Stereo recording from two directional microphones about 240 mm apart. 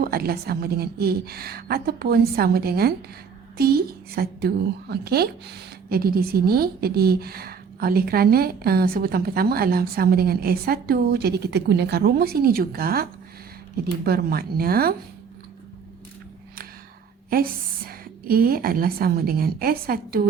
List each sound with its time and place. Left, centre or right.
0.0 s a woman's voice: right
17.2 s a woman's voice: right